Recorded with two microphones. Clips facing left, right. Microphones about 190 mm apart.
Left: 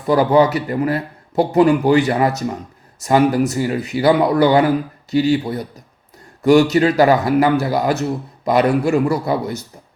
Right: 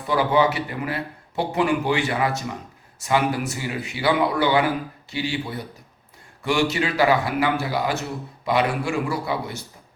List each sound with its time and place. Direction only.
0.1 s a man's voice: 40° left (ahead or behind)